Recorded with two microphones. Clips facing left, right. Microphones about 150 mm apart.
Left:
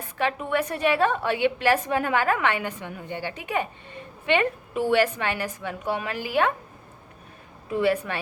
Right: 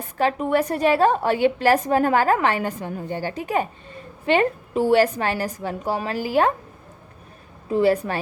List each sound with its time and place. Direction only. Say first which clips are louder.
0.2 s a woman's voice: right 5 dB; 35° right (ahead or behind)
7.7 s a woman's voice: right 4 dB; 35° right (ahead or behind)